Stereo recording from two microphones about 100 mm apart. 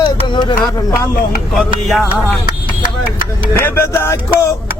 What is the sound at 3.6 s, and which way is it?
Music, 25° left (ahead or behind).